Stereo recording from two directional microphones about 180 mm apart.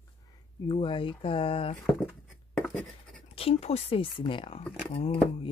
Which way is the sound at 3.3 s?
35° left (ahead or behind).